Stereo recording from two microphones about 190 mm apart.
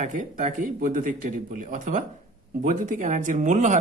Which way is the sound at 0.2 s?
40° right (ahead or behind).